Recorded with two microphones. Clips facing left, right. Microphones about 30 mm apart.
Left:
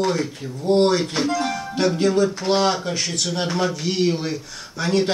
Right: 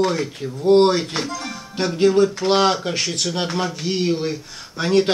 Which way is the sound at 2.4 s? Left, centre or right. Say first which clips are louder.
Right 2 dB; right.